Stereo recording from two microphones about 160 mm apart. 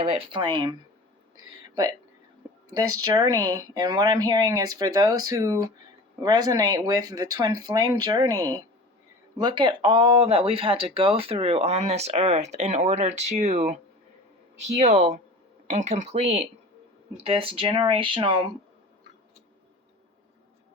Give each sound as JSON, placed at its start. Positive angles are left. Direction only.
{"t": 0.0, "sound": "speech", "side_deg": -35}
{"t": 14.8, "sound": "speech", "side_deg": -45}
{"t": 17.2, "sound": "speech", "side_deg": -35}